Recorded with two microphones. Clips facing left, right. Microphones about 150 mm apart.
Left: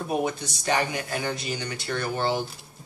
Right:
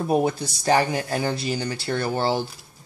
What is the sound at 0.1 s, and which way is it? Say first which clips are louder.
Speech: right 5 dB; 35° right (ahead or behind).